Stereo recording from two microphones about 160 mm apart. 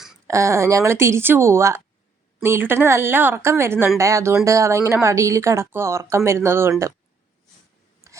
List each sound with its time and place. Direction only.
0.3 s speech: 20° right (ahead or behind)
8.0 s filing: 20° right (ahead or behind)